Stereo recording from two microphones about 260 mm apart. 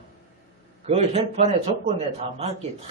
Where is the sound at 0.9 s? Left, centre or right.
Right.